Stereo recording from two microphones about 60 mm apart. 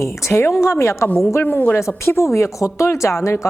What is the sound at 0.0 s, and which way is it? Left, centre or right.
Speech, left.